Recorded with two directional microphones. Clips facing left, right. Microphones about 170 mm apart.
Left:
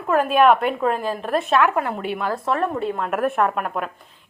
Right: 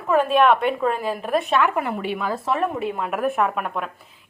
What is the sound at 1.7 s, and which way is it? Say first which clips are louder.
Speech: left 1 dB; 45° left (ahead or behind).